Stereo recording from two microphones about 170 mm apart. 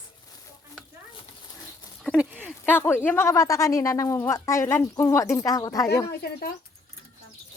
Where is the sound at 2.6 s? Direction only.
10° left (ahead or behind).